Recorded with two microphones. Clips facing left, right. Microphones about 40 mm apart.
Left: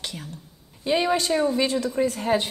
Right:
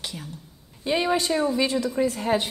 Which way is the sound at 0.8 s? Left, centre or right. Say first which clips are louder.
Left 1 dB; centre.